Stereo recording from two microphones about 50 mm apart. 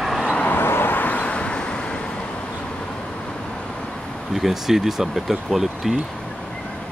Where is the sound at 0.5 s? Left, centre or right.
Left.